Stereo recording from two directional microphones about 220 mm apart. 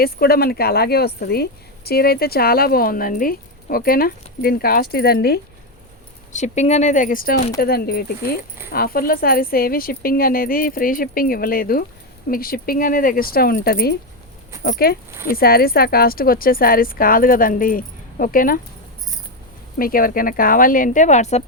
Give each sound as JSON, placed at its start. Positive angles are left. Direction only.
{"t": 0.0, "sound": "a woman's voice", "side_deg": 45}
{"t": 6.3, "sound": "a woman's voice", "side_deg": 30}
{"t": 19.8, "sound": "a woman's voice", "side_deg": 40}